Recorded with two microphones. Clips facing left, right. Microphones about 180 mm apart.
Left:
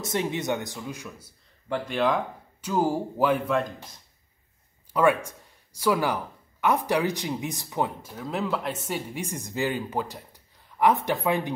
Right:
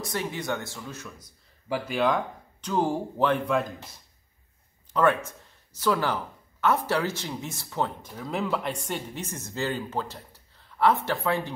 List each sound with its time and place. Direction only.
0.0 s speech: 20° left (ahead or behind)
1.7 s speech: centre (ahead or behind)
4.9 s speech: 10° left (ahead or behind)
8.1 s speech: centre (ahead or behind); by 11.5 s 15° left (ahead or behind)